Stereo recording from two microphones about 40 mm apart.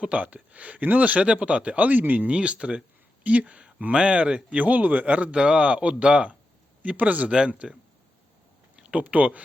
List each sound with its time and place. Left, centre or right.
0.0 s speech: right
1.8 s a man's voice: right
2.2 s speech: right
4.6 s a man's voice: right
5.3 s speech: right
6.8 s speech: right
7.3 s speech: right
8.7 s a sound: right
9.0 s speech: right